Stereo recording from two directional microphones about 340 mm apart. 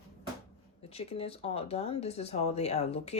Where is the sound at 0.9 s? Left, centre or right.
Centre.